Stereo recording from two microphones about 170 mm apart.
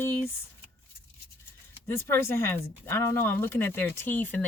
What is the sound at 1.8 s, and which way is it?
Speech, 15° left (ahead or behind).